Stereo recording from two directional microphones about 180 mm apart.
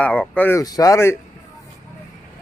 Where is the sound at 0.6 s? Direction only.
20° left (ahead or behind).